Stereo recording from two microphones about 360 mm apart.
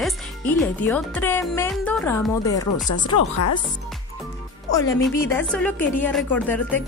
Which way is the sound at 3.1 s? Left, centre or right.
Left.